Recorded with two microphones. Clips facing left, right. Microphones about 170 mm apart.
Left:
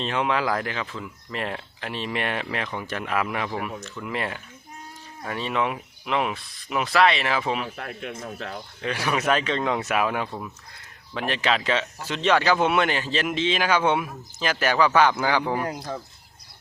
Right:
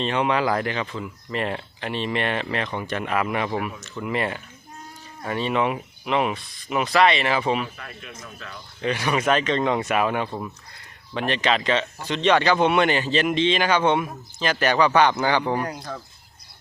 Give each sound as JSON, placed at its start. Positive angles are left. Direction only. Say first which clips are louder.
{"t": 0.0, "sound": "speech", "louder": "right 3 dB", "side_deg": 0}
{"t": 7.8, "sound": "speech", "louder": "left 6 dB", "side_deg": 70}
{"t": 8.8, "sound": "speech", "louder": "right 3 dB", "side_deg": 0}